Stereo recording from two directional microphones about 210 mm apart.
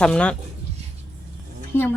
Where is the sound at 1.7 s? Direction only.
10° left (ahead or behind).